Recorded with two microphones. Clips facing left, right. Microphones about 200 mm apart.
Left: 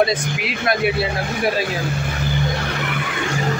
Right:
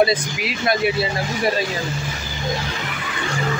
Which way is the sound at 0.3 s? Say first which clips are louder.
Even; 60° left (ahead or behind).